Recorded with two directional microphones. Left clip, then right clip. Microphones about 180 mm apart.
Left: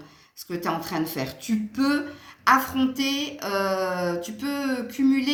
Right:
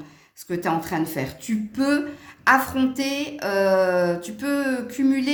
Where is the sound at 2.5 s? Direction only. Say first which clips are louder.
Right 2 dB; 50° right (ahead or behind).